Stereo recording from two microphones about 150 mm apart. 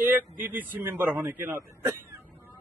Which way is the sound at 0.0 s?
15° right (ahead or behind).